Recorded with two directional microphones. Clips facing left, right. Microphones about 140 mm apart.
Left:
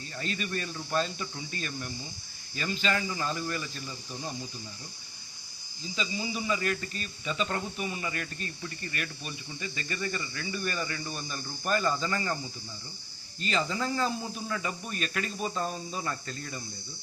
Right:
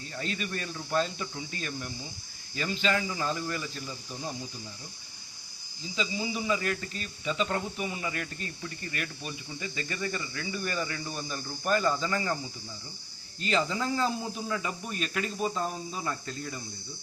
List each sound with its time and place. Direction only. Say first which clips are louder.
0.2 s speech: left 1 dB; 15° right (ahead or behind)
6.0 s speech: right 2 dB; 15° right (ahead or behind)
13.7 s speech: right 1 dB; 10° right (ahead or behind)